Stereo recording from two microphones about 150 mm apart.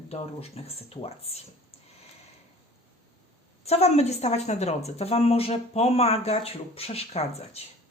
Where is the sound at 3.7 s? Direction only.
45° left (ahead or behind).